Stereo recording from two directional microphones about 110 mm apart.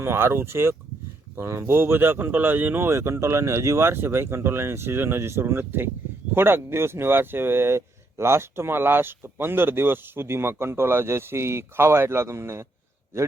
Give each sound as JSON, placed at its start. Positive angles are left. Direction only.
{"t": 0.0, "sound": "speech", "side_deg": -20}